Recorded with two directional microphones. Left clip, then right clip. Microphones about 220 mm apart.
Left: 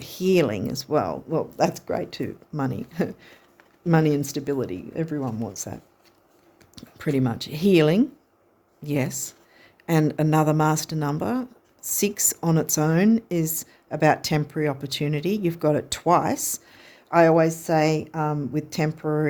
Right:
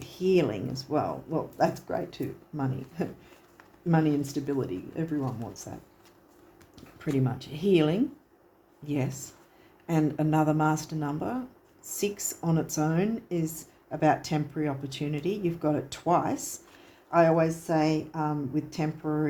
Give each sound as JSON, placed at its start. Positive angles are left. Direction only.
{"t": 0.0, "sound": "speech", "side_deg": 55}
{"t": 6.7, "sound": "speech", "side_deg": 55}